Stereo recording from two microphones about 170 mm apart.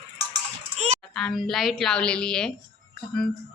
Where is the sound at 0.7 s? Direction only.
40° right (ahead or behind).